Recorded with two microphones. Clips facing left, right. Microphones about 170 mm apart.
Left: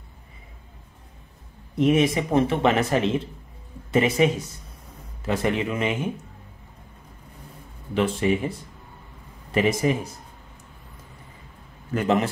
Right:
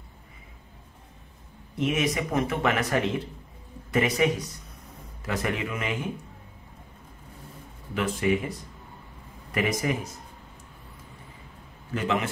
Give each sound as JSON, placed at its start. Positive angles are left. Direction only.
{"t": 1.8, "sound": "speech", "side_deg": 30}
{"t": 7.9, "sound": "speech", "side_deg": 30}
{"t": 11.9, "sound": "a man's voice", "side_deg": 40}